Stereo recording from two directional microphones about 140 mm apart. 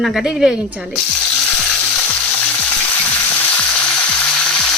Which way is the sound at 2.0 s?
10° left (ahead or behind).